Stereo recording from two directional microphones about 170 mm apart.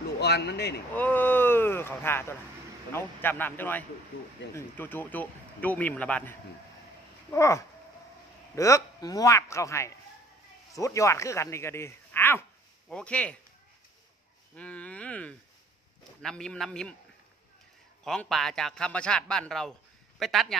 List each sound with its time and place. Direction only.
0.2 s speech: 75° left (ahead or behind)
0.9 s speech: 10° left (ahead or behind)
14.5 s a man's voice: 10° left (ahead or behind)
18.0 s a man's voice: 5° left (ahead or behind)